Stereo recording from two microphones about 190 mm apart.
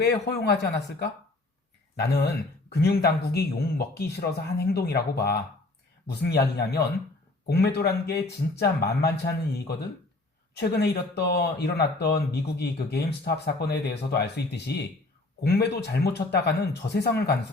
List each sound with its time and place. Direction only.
0.0 s speech: 60° left (ahead or behind)